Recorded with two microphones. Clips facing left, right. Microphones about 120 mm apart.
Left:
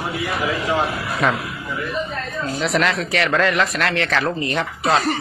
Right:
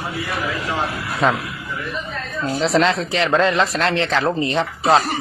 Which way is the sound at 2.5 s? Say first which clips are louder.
Right 3 dB; 30° right (ahead or behind).